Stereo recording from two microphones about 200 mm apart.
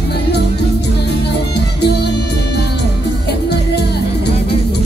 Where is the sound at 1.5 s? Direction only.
55° left (ahead or behind).